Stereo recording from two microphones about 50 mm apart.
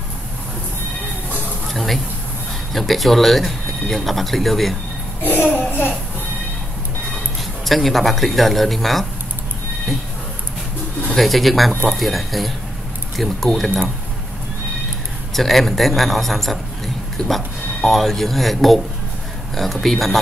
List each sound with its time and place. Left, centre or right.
1.7 s speech: centre
5.2 s a sound: left
7.6 s speech: centre
11.1 s speech: centre
15.3 s a man's voice: centre